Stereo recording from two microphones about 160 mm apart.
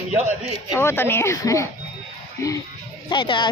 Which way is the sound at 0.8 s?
15° left (ahead or behind).